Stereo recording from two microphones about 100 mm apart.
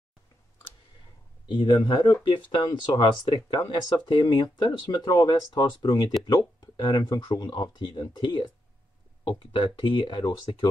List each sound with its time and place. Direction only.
1.5 s speech: 55° left (ahead or behind)